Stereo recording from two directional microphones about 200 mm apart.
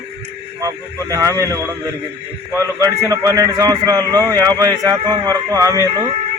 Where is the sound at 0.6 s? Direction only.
15° right (ahead or behind).